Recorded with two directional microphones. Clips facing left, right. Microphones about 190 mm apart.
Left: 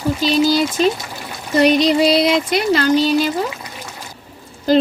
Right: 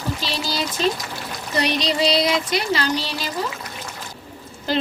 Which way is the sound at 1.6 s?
50° left (ahead or behind).